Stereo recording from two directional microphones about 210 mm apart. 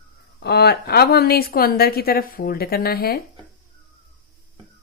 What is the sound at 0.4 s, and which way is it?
A woman's voice, 50° left (ahead or behind).